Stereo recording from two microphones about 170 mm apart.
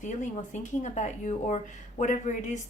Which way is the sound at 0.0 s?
45° left (ahead or behind).